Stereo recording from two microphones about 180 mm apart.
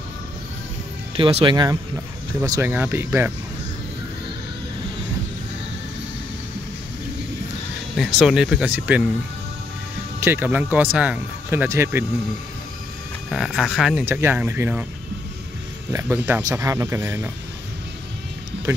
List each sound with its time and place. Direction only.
1.1 s speech: 30° right (ahead or behind); by 3.3 s 15° right (ahead or behind)
8.2 s speech: centre (ahead or behind)
10.2 s speech: 10° right (ahead or behind)
13.3 s speech: centre (ahead or behind)
15.9 s speech: 15° right (ahead or behind)